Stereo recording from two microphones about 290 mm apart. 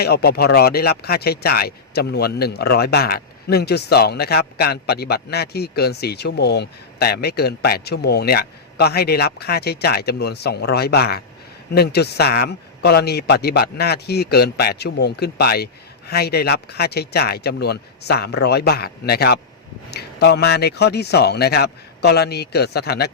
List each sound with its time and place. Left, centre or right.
0.0 s speech: left